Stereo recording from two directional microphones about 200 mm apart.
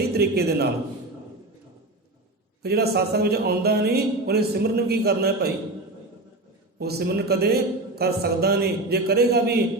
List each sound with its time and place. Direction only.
0.1 s a man's voice: 55° right (ahead or behind)
2.6 s speech: 55° right (ahead or behind)
6.7 s speech: 50° right (ahead or behind)